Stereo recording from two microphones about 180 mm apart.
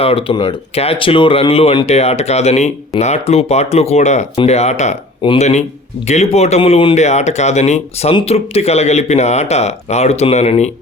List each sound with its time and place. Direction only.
0.0 s speech: 30° left (ahead or behind)